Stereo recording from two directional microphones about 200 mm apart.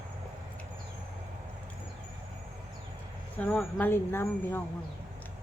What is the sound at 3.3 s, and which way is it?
Speech, 10° left (ahead or behind).